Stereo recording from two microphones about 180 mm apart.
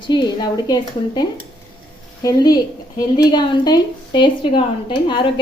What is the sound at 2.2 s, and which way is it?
A woman's voice, 20° left (ahead or behind).